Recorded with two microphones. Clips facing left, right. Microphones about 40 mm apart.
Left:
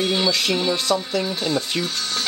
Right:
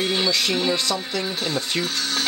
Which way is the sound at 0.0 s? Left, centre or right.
Centre.